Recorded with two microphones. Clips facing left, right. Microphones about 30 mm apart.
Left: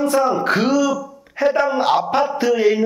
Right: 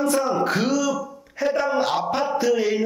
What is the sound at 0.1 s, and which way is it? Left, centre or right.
Speech, centre.